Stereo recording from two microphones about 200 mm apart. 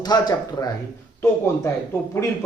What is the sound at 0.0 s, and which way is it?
Speech, 20° left (ahead or behind).